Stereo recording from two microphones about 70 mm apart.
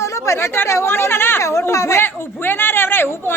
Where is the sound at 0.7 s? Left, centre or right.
Left.